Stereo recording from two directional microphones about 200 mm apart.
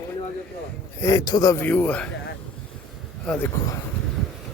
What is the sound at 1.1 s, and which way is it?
A man's voice, 20° left (ahead or behind).